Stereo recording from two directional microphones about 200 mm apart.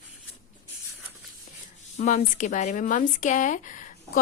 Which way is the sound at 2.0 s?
40° left (ahead or behind).